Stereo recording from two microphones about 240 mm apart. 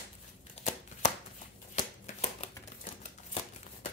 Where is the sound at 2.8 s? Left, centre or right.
Left.